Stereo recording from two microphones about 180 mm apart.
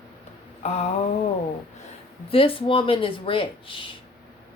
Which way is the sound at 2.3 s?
30° left (ahead or behind).